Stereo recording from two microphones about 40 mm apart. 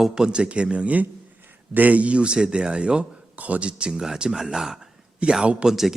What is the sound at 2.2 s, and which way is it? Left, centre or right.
Speech, right.